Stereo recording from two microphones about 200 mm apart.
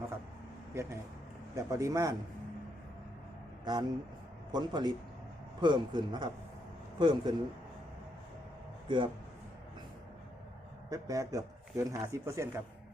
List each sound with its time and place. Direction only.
0.7 s speech: 15° right (ahead or behind)
3.6 s a man's voice: 20° right (ahead or behind)
8.9 s a man's voice: 25° right (ahead or behind)
10.8 s speech: 15° right (ahead or behind)